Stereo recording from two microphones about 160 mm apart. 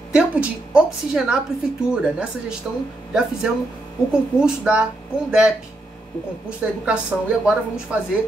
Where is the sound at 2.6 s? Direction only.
5° right (ahead or behind).